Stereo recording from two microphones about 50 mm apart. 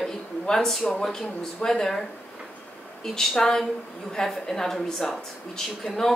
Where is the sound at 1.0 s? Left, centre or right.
Centre.